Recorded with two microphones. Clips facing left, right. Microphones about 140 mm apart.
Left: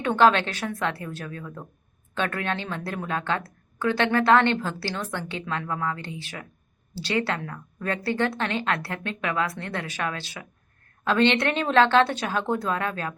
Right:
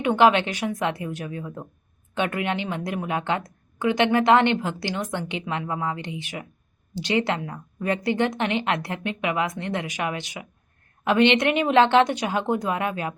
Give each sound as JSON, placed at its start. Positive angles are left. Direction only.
{"t": 0.0, "sound": "speech", "side_deg": -15}